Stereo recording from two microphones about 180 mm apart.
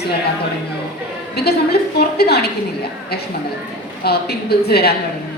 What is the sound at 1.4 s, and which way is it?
A woman's voice, 60° left (ahead or behind).